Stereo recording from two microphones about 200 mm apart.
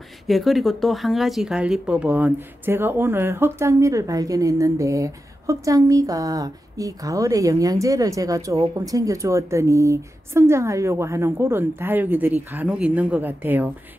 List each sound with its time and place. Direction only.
0.3 s speech: centre (ahead or behind)